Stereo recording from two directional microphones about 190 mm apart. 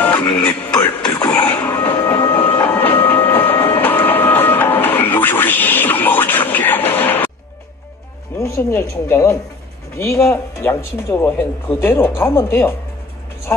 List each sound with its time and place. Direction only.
0.0 s music: 10° left (ahead or behind)
0.7 s music: 15° left (ahead or behind)
1.3 s printer: 10° left (ahead or behind)
8.4 s speech: 15° left (ahead or behind)